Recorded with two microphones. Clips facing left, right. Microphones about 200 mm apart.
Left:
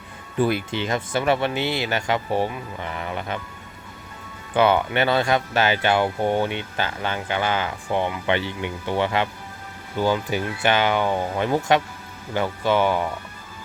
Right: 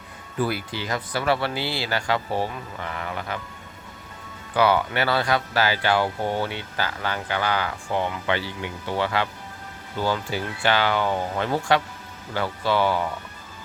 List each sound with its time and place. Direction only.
0.3 s speech: 20° left (ahead or behind)
4.5 s speech: 20° left (ahead or behind)